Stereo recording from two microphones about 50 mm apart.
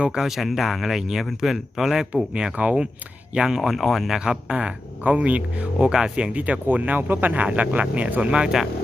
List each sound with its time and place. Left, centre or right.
0.0 s speech: centre
2.3 s speech: right
3.7 s speech: centre
4.2 s speech: centre
5.0 s speech: right
5.8 s speech: centre
6.3 s speech: right